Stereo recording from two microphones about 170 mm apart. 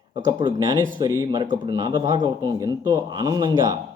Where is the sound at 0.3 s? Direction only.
25° right (ahead or behind).